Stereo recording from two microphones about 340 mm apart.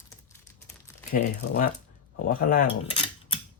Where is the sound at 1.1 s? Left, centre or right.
Left.